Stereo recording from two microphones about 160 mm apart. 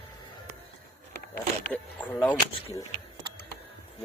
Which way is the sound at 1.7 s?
10° left (ahead or behind).